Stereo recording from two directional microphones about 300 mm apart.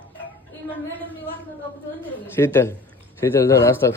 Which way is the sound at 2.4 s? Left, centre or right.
Centre.